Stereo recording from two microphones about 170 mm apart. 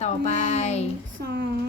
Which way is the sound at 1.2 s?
85° right.